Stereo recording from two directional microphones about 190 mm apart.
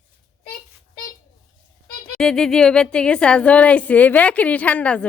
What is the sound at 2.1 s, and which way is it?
A woman's voice, 5° left (ahead or behind).